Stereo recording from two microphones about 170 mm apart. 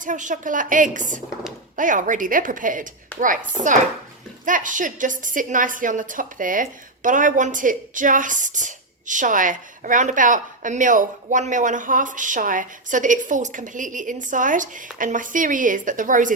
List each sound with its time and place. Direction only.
0.0 s a woman's voice: 50° right (ahead or behind)